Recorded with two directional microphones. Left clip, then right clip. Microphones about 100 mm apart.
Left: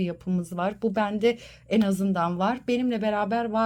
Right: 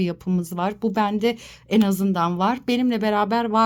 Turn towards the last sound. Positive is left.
turn(degrees=-30)  # may be behind; listen again after turning